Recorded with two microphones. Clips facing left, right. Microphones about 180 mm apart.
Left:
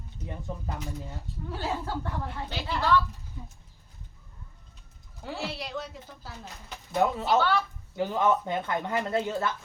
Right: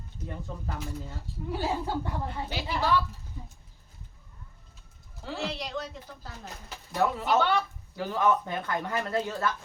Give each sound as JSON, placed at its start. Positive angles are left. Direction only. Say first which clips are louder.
{"t": 0.3, "sound": "speech", "louder": "left 1 dB", "side_deg": 15}
{"t": 1.5, "sound": "a woman's voice", "louder": "right 2 dB", "side_deg": -15}
{"t": 5.4, "sound": "a woman's voice", "louder": "right 2 dB", "side_deg": 0}
{"t": 6.9, "sound": "speech", "louder": "left 2 dB", "side_deg": 20}
{"t": 7.3, "sound": "a woman's voice", "louder": "even", "side_deg": -15}
{"t": 7.9, "sound": "speech", "louder": "left 1 dB", "side_deg": 20}